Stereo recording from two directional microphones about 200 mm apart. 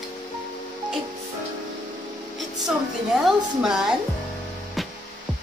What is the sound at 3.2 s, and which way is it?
Speech, centre (ahead or behind).